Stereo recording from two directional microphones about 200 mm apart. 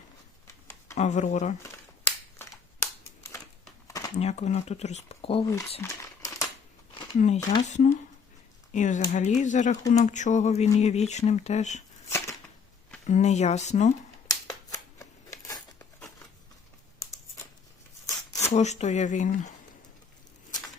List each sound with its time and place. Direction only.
0.9 s speech: 35° left (ahead or behind)
1.6 s a sound: 10° left (ahead or behind)
4.2 s speech: 35° left (ahead or behind)
5.8 s crumpling: 15° left (ahead or behind)
7.2 s speech: 35° left (ahead or behind)
12.1 s a sound: 15° left (ahead or behind)
13.1 s speech: 35° left (ahead or behind)
14.3 s a sound: 20° left (ahead or behind)
18.4 s speech: 35° left (ahead or behind)